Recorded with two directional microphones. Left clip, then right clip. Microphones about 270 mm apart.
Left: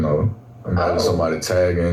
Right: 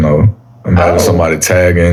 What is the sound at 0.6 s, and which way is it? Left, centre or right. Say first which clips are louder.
Speech: right 9 dB; right.